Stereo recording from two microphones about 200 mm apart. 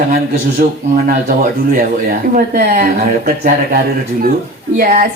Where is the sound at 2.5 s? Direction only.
50° right (ahead or behind).